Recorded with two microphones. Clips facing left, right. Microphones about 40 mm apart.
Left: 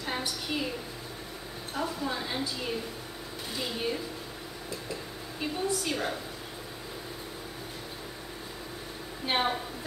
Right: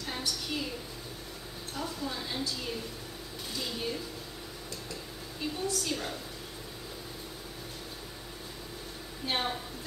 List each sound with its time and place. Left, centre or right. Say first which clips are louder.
0.0 s a sound: left 3 dB; left
1.8 s a woman's voice: left 4 dB; centre
5.4 s a woman's voice: left 3 dB; centre
9.2 s a woman's voice: left 4 dB; centre